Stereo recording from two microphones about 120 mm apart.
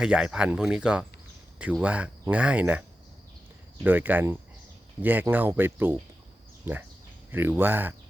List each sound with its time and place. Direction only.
0.0 s speech: 5° right (ahead or behind)
3.8 s speech: 15° right (ahead or behind)